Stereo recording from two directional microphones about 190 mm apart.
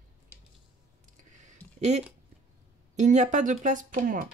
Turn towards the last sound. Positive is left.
turn(degrees=-45)  # may be behind; listen again after turning